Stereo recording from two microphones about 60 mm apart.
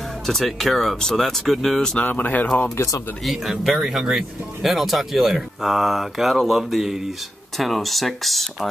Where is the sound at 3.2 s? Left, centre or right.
Centre.